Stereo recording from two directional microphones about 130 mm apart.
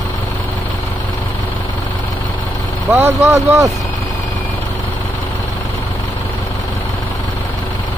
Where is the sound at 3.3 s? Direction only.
25° right (ahead or behind).